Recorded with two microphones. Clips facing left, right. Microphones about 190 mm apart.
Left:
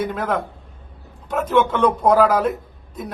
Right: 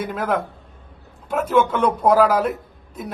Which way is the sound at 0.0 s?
5° right (ahead or behind).